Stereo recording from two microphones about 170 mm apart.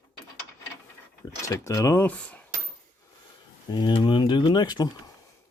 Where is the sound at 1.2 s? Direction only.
20° left (ahead or behind).